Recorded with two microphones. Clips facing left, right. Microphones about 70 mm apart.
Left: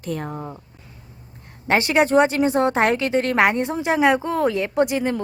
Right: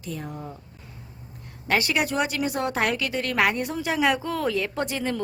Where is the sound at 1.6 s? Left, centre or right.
Left.